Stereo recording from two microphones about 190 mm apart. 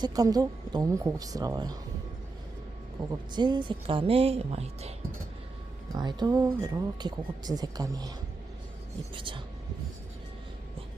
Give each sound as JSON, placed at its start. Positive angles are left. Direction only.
{"t": 0.0, "sound": "speech", "side_deg": -20}
{"t": 3.0, "sound": "speech", "side_deg": -20}
{"t": 5.9, "sound": "speech", "side_deg": -20}
{"t": 9.1, "sound": "speech", "side_deg": -25}